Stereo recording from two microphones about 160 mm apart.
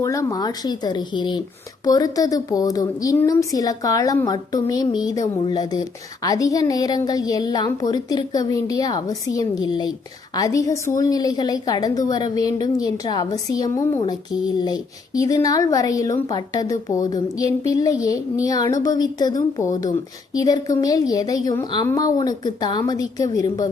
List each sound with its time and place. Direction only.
0.0 s speech: 20° left (ahead or behind)